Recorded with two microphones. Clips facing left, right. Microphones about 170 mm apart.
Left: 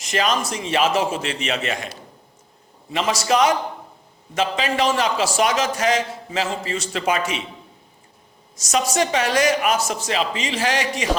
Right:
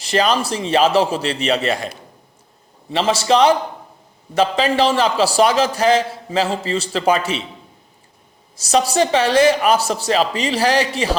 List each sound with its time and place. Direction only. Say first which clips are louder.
0.0 s a man's voice: right 4 dB; 35° right (ahead or behind)
2.9 s a man's voice: right 4 dB; 30° right (ahead or behind)
8.5 s a man's voice: right 4 dB; 30° right (ahead or behind)